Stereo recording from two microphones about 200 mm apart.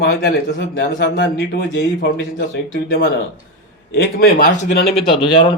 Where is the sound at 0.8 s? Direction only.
60° left (ahead or behind).